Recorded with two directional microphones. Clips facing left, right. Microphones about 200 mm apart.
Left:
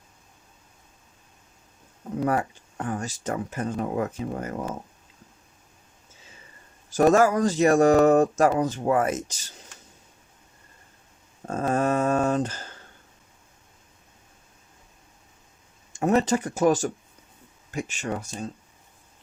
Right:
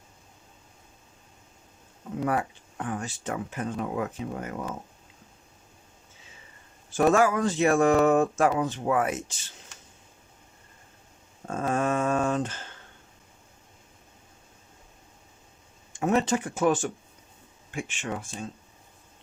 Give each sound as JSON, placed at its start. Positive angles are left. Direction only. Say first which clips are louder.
{"t": 2.2, "sound": "speech", "louder": "left 2 dB", "side_deg": 40}
{"t": 6.9, "sound": "speech", "louder": "left 3 dB", "side_deg": 40}
{"t": 11.4, "sound": "speech", "louder": "left 3 dB", "side_deg": 40}
{"t": 16.0, "sound": "speech", "louder": "left 3 dB", "side_deg": 40}